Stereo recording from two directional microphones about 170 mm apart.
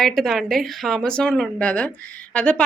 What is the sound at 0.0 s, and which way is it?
A woman's voice, centre (ahead or behind).